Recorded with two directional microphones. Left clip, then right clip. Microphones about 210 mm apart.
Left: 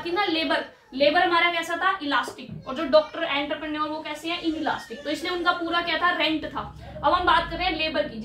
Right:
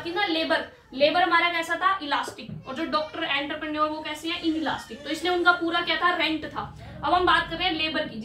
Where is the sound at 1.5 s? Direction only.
15° left (ahead or behind); by 4.3 s centre (ahead or behind).